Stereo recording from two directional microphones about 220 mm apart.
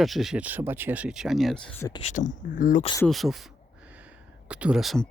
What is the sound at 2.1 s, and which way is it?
Speech, 35° left (ahead or behind).